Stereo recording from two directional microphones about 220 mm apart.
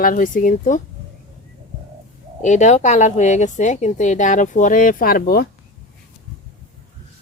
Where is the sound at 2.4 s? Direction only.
35° left (ahead or behind).